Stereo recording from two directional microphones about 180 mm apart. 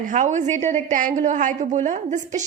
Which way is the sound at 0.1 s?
40° right (ahead or behind).